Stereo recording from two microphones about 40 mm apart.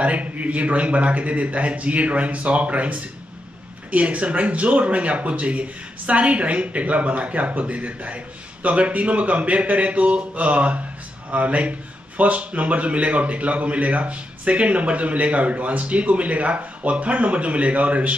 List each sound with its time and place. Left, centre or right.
0.0 s a man's voice: right